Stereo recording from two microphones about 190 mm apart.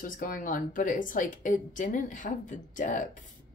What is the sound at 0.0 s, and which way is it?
Speech, 45° left (ahead or behind).